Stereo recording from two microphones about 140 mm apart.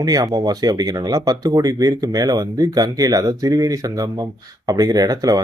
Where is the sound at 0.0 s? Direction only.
25° right (ahead or behind).